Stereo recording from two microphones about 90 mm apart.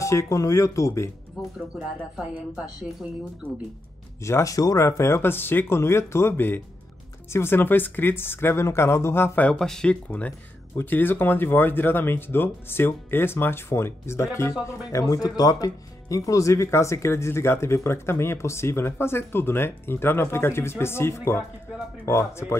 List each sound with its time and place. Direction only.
0.0 s speech: 35° left (ahead or behind)
1.4 s music: 10° right (ahead or behind)
1.8 s speech: 10° right (ahead or behind)
4.2 s speech: 35° left (ahead or behind)
9.6 s speech: 5° left (ahead or behind); by 22.6 s 30° left (ahead or behind)